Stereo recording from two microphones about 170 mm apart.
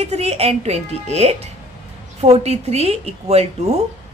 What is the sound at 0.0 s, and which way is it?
A woman's voice, 40° right (ahead or behind).